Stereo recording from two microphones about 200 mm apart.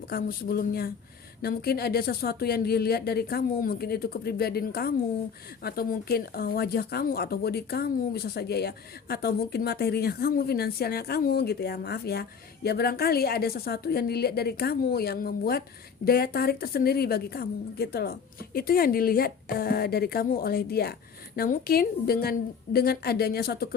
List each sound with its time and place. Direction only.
0.1 s speech: 45° left (ahead or behind)